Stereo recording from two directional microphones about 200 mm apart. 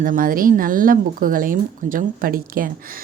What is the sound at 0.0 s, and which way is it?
Speech, 45° right (ahead or behind).